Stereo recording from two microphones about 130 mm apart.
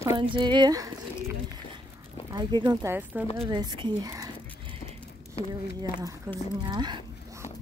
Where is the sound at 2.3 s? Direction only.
35° right (ahead or behind).